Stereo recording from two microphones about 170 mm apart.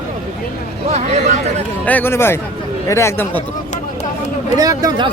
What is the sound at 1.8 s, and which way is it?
Speech, 10° left (ahead or behind).